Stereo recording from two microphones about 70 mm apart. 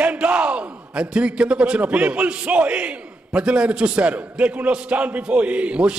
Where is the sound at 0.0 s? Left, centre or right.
Centre.